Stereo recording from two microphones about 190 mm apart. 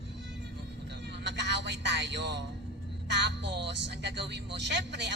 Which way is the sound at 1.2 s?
65° right (ahead or behind).